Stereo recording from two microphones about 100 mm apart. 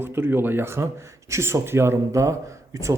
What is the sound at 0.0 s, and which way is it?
Speech, 20° right (ahead or behind).